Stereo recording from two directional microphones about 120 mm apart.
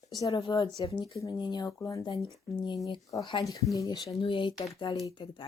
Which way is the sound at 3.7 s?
25° left (ahead or behind).